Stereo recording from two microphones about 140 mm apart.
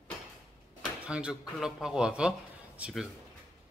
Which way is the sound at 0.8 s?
5° right (ahead or behind).